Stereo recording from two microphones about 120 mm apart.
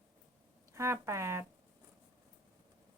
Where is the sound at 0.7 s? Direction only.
25° right (ahead or behind).